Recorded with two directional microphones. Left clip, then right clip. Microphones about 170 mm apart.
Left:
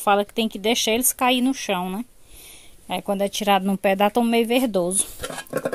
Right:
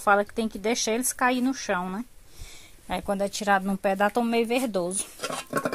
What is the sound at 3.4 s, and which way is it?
Speech, 45° left (ahead or behind).